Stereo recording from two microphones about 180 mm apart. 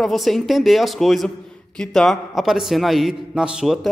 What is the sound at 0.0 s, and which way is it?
A man's voice, centre (ahead or behind).